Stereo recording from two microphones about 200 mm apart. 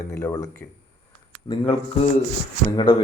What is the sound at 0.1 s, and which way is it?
Speech, 15° left (ahead or behind).